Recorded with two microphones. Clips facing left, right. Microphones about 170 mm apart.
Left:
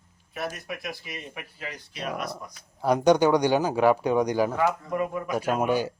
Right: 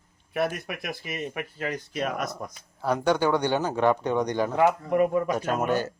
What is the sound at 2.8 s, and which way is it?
Speech, 15° left (ahead or behind).